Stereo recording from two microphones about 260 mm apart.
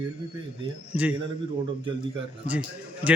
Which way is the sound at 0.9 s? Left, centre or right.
Centre.